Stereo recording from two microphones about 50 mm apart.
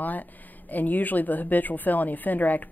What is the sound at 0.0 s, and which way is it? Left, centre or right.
Speech, left.